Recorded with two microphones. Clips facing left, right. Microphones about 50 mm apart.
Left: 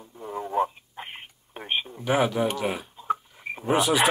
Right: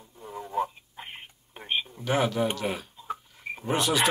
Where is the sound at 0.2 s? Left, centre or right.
Centre.